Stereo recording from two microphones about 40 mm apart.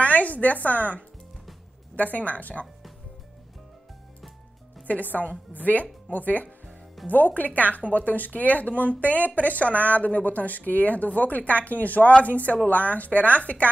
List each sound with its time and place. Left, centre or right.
0.0 s speech: left
2.1 s speech: left
4.8 s speech: left